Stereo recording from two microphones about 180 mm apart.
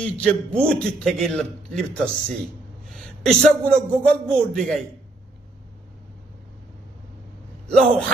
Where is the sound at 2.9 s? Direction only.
Centre (ahead or behind).